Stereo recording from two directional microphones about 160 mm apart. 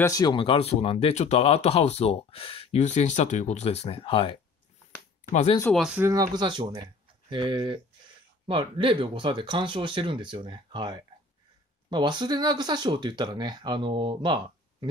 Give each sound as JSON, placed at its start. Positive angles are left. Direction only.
{"t": 0.0, "sound": "speech", "side_deg": 25}
{"t": 5.7, "sound": "speech", "side_deg": 0}
{"t": 5.9, "sound": "speech", "side_deg": -20}